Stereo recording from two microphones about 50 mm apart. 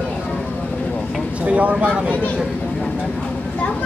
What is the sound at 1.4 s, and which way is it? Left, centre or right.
Speech, right.